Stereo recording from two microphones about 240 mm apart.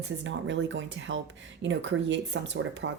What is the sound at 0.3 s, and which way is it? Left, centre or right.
Speech, right.